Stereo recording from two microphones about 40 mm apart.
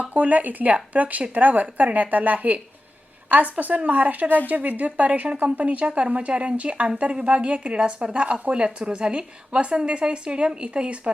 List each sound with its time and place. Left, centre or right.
0.0 s a woman's voice: right
8.5 s speech: right